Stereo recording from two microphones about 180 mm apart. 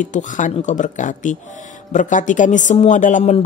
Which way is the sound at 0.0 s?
45° left (ahead or behind).